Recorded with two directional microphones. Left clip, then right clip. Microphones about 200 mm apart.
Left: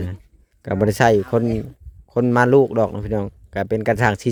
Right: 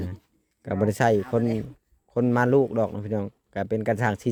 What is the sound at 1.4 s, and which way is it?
Speech, centre (ahead or behind).